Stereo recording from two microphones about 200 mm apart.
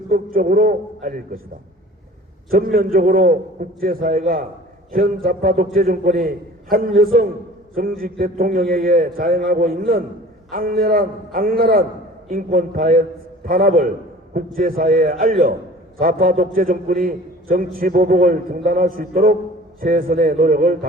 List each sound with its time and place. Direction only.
0.1 s a man's voice: 45° right (ahead or behind)
2.5 s a man's voice: 45° right (ahead or behind)